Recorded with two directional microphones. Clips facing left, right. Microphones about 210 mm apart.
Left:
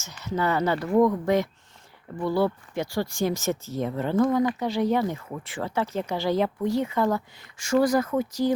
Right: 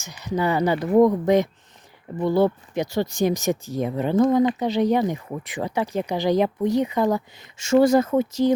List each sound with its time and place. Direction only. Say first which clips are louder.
0.0 s speech: right 3 dB; 15° right (ahead or behind)